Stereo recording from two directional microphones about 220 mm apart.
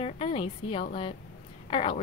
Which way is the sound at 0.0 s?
25° left (ahead or behind).